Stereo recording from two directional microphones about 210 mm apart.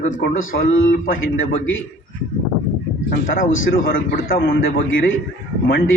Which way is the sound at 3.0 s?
45° left (ahead or behind).